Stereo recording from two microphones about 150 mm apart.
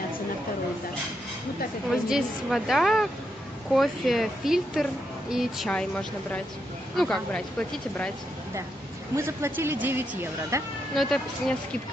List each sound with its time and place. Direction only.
1.9 s speech: centre (ahead or behind)
5.7 s speech: 5° left (ahead or behind)
9.1 s speech: 15° right (ahead or behind)
11.0 s speech: 5° left (ahead or behind)